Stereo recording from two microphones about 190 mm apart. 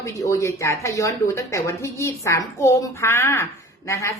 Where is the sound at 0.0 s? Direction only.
15° left (ahead or behind).